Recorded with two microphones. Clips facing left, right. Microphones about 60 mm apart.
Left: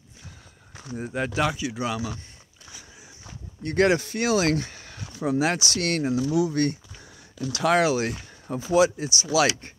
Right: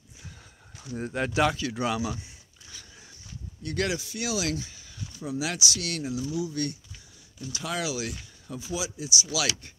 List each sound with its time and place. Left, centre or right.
0.9 s speech: centre
2.0 s speech: centre
3.6 s speech: left
5.4 s speech: left
6.2 s speech: left
6.5 s speech: left
7.3 s speech: left
7.8 s speech: left